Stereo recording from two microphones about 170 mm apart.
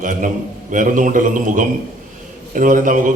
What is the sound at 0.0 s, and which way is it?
A man's voice, 50° right (ahead or behind).